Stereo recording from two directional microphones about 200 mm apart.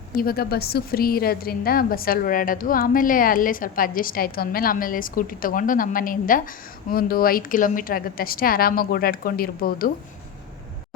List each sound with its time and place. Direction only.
0.2 s a woman's voice: 50° left (ahead or behind)